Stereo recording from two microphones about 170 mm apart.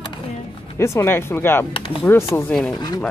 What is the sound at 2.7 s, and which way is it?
Speech, 25° left (ahead or behind).